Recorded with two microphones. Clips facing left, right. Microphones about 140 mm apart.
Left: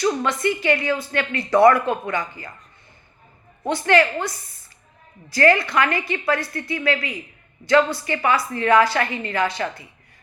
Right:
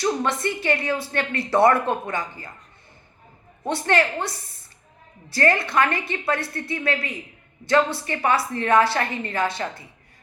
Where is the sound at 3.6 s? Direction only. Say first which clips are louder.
Left 3 dB; 30° right (ahead or behind).